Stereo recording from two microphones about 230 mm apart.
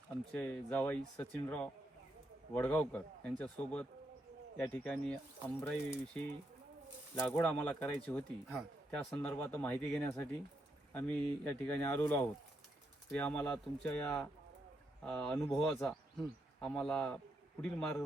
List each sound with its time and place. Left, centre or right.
0.3 s speech: centre
11.4 s speech: centre